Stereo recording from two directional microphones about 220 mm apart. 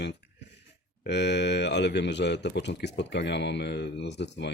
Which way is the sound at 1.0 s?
50° left (ahead or behind).